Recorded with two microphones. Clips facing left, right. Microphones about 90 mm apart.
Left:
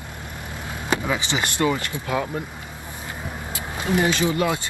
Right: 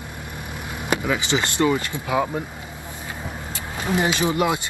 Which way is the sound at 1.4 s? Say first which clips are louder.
Right 1 dB; 20° right (ahead or behind).